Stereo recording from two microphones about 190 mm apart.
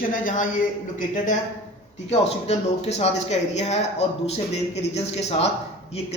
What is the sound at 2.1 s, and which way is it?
Speech, 35° left (ahead or behind).